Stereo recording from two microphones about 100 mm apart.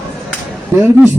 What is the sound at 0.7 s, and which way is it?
Speech, 25° right (ahead or behind).